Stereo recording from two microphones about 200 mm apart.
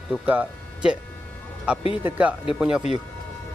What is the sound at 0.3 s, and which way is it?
Speech, 10° right (ahead or behind).